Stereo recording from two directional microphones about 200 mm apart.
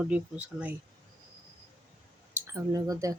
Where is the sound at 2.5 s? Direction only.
20° right (ahead or behind).